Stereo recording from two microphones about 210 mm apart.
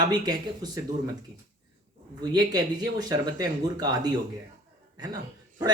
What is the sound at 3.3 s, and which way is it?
Speech, 20° right (ahead or behind).